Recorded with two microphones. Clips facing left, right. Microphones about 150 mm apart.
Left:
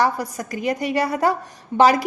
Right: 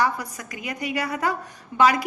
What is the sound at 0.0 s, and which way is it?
A woman's voice, 35° left (ahead or behind).